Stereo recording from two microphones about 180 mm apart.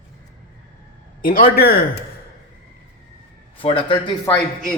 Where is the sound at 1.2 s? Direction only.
50° left (ahead or behind).